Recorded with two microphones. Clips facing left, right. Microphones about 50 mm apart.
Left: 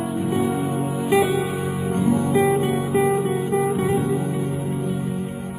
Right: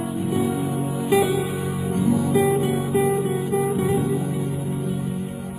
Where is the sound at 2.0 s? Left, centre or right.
Left.